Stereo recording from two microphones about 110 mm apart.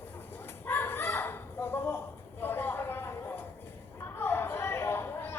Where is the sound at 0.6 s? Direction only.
20° left (ahead or behind).